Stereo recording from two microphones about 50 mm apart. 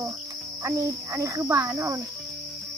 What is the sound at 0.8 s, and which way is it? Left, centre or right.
Cricket, right.